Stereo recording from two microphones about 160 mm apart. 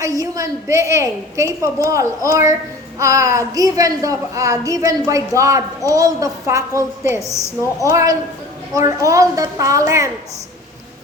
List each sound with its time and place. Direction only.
0.0 s a woman's voice: 20° right (ahead or behind)
7.2 s a woman's voice: 20° left (ahead or behind)
7.9 s a woman's voice: 20° right (ahead or behind)